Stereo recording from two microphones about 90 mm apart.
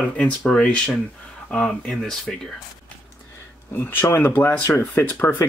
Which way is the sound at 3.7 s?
25° left (ahead or behind).